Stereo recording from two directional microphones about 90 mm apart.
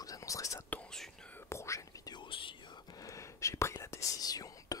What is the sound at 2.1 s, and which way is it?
Whispering, 70° left (ahead or behind).